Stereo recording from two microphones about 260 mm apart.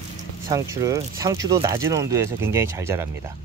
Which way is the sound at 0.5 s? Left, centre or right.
Centre.